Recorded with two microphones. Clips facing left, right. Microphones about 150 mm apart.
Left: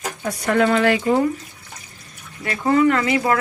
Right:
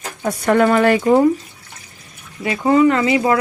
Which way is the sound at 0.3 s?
50° right (ahead or behind).